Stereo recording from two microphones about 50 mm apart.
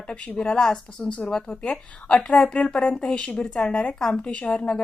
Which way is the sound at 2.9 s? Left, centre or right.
Centre.